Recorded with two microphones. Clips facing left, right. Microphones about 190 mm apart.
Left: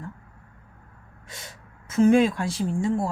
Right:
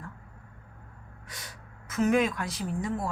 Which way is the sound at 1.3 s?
25° left (ahead or behind).